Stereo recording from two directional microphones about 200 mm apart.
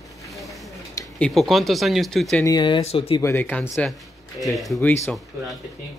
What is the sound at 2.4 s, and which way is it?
Speech, 20° left (ahead or behind).